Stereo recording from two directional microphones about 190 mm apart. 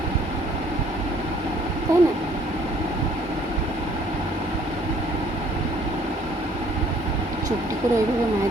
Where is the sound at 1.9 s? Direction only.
15° right (ahead or behind).